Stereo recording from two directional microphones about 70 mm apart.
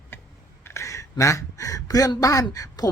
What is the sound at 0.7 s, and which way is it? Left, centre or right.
Speech, left.